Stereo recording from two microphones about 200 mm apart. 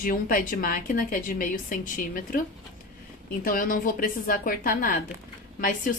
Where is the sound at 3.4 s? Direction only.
45° left (ahead or behind).